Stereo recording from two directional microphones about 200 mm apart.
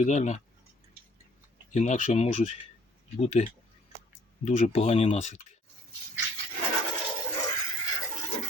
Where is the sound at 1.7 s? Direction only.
35° left (ahead or behind).